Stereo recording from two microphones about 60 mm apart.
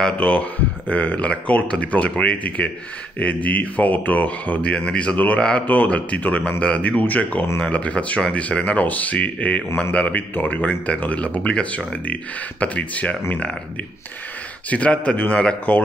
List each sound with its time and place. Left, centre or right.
0.0 s speech: centre
4.6 s speech: centre
14.7 s speech: left